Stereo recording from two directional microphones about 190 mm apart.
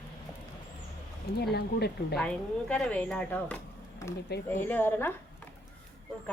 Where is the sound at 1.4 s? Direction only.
55° left (ahead or behind).